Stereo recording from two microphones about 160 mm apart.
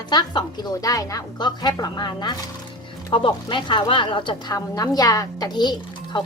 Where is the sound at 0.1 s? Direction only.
25° left (ahead or behind).